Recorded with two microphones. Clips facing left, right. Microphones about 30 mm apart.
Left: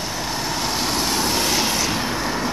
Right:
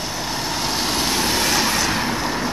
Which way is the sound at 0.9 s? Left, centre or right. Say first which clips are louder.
Right 1 dB; right.